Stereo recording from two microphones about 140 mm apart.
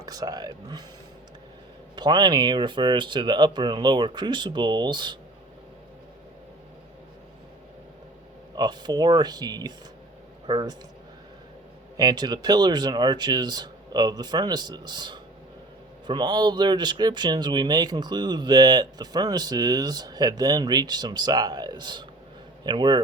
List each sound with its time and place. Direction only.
0.0 s speech: 25° right (ahead or behind)
2.0 s speech: 30° right (ahead or behind)
8.5 s speech: 30° right (ahead or behind)
11.9 s speech: 30° right (ahead or behind)